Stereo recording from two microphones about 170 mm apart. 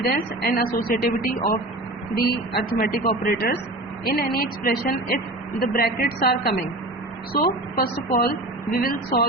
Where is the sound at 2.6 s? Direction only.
65° left (ahead or behind).